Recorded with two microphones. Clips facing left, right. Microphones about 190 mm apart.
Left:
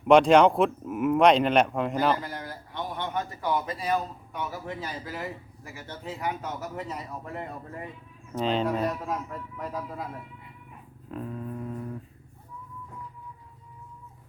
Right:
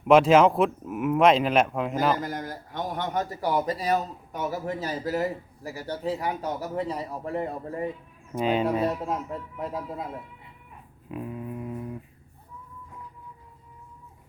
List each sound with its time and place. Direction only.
0.0 s speech: centre (ahead or behind)
2.2 s a man's voice: 45° right (ahead or behind)
8.4 s speech: 10° right (ahead or behind)
8.8 s a man's voice: 25° right (ahead or behind)
11.1 s a sound: 10° right (ahead or behind)